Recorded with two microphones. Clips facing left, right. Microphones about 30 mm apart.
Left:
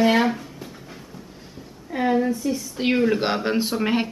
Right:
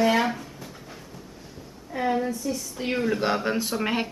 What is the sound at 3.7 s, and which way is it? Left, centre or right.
Speech, centre.